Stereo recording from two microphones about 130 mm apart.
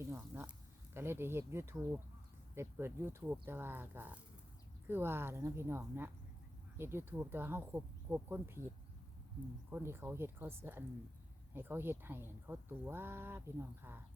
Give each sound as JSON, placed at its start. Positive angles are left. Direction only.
{"t": 0.1, "sound": "speech", "side_deg": -20}
{"t": 9.6, "sound": "speech", "side_deg": -15}